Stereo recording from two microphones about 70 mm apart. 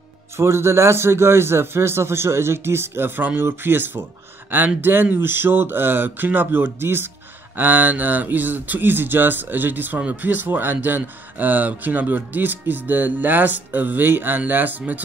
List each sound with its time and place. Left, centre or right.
0.4 s speech: right